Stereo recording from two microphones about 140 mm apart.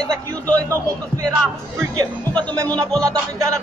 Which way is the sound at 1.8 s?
30° right (ahead or behind).